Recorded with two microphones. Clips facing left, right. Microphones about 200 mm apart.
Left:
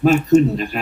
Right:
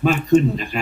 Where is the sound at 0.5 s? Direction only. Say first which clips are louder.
Left 3 dB; 5° left (ahead or behind).